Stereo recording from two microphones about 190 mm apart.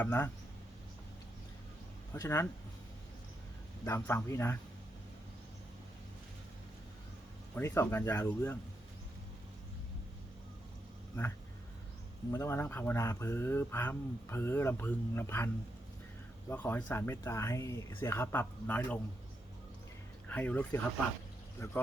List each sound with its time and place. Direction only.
0.0 s speech: 10° left (ahead or behind)
2.1 s speech: 15° left (ahead or behind)
3.8 s speech: 10° left (ahead or behind)
7.5 s speech: 10° left (ahead or behind)
12.3 s speech: 15° left (ahead or behind)
16.5 s speech: 10° left (ahead or behind)
20.2 s speech: 10° left (ahead or behind)